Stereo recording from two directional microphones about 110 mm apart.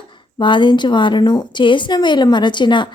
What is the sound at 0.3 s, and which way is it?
A woman's voice, 45° left (ahead or behind).